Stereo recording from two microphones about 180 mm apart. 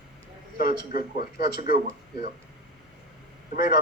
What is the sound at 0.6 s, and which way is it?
Speech, 55° left (ahead or behind).